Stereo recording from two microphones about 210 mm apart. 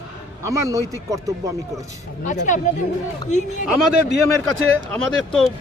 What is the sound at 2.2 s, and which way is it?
Speech, 35° left (ahead or behind).